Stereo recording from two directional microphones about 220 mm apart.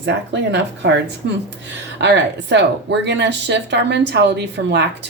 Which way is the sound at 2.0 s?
50° right (ahead or behind).